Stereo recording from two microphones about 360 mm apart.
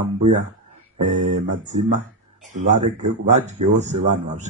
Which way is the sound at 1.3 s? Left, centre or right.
Centre.